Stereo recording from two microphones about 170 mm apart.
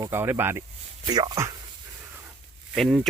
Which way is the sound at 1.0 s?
25° right (ahead or behind).